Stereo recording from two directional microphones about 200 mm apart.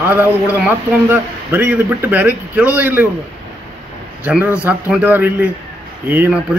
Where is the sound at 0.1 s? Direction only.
10° right (ahead or behind).